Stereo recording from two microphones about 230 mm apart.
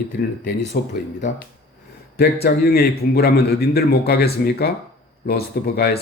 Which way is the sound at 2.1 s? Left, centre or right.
Left.